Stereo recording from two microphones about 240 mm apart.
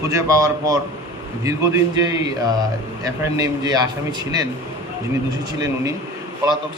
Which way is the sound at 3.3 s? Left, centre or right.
Centre.